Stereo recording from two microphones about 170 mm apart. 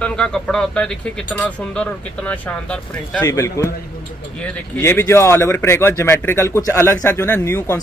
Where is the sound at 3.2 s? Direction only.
15° left (ahead or behind).